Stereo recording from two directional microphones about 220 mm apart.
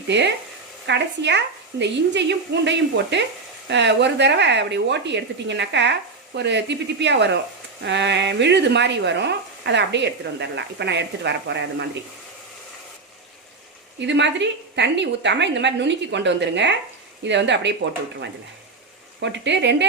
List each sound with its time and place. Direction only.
0.1 s speech: 50° right (ahead or behind)
14.0 s speech: 55° right (ahead or behind)
19.2 s speech: 55° right (ahead or behind)